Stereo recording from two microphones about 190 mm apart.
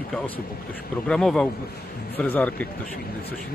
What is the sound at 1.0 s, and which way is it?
Speech, 5° left (ahead or behind).